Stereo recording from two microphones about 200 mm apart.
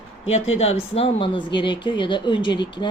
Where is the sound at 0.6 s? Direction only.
30° left (ahead or behind).